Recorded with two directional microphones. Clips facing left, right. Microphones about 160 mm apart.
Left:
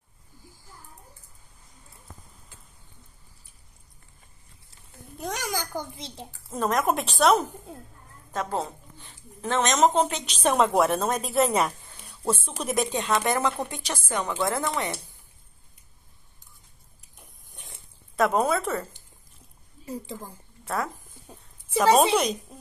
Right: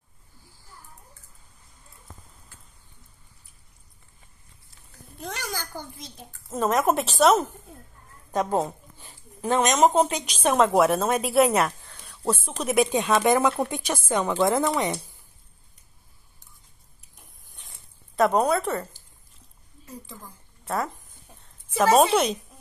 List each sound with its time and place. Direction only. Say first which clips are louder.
5.2 s a sound: left 3 dB; 15° left (ahead or behind)
5.8 s a child's voice: left 4 dB; 25° left (ahead or behind)
6.5 s a woman's voice: right 2 dB; 5° right (ahead or behind)
8.3 s a woman's voice: right 5 dB; 15° right (ahead or behind)
11.5 s speech: right 1 dB; centre (ahead or behind)
12.9 s speech: right 4 dB; 15° right (ahead or behind)
18.1 s a woman's voice: right 2 dB; centre (ahead or behind)
20.6 s a woman's voice: right 1 dB; centre (ahead or behind)